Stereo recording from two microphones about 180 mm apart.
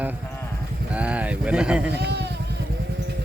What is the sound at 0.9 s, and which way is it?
Speech, 5° right (ahead or behind).